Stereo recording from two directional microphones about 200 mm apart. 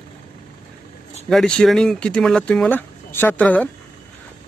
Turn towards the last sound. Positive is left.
turn(degrees=10)  # may be behind; listen again after turning